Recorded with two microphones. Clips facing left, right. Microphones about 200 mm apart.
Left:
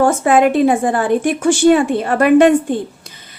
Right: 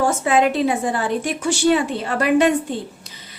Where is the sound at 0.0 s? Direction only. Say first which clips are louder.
Left 5 dB; 50° left (ahead or behind).